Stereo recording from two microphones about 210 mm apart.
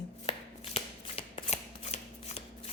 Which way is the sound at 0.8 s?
30° left (ahead or behind).